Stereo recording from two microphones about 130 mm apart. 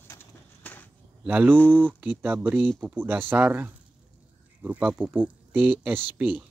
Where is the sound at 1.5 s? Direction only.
10° left (ahead or behind).